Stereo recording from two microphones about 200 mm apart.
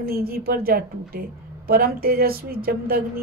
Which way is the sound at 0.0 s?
50° right (ahead or behind).